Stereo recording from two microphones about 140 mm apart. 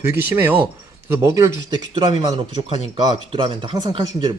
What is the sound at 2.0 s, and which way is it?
Speech, 40° right (ahead or behind).